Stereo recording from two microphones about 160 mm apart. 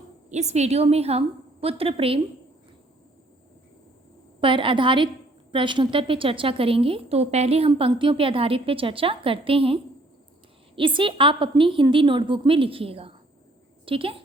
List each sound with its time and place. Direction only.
0.3 s a woman's voice: 45° right (ahead or behind)
4.4 s a woman's voice: 30° right (ahead or behind)